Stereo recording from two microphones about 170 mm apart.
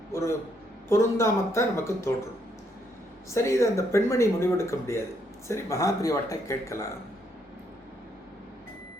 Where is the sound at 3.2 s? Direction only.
15° left (ahead or behind).